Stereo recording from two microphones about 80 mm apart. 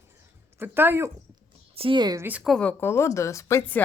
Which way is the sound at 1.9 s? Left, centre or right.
Right.